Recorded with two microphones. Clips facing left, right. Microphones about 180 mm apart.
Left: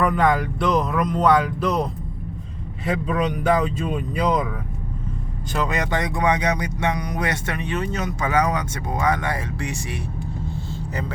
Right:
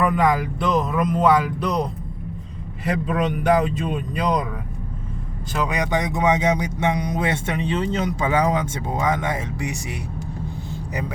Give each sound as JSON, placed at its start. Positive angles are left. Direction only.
{"t": 0.0, "sound": "speech", "side_deg": -5}
{"t": 5.5, "sound": "speech", "side_deg": -10}